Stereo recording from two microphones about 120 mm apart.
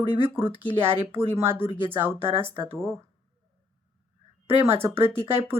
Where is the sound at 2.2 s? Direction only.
50° right (ahead or behind).